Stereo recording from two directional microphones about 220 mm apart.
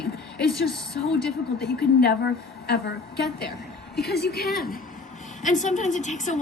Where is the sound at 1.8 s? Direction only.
50° left (ahead or behind).